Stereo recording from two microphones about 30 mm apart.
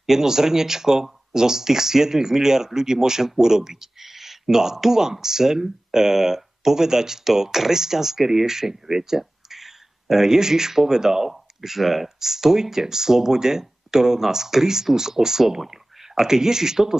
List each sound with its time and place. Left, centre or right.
0.0 s speech: centre